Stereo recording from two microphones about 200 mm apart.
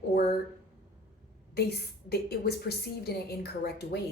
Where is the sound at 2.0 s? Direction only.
50° left (ahead or behind).